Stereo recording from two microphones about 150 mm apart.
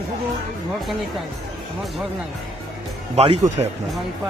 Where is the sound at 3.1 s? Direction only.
45° right (ahead or behind).